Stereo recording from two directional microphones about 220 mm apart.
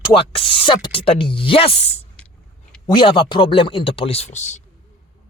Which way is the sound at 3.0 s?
20° left (ahead or behind).